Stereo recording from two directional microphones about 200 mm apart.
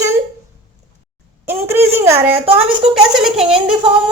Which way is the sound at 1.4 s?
10° right (ahead or behind).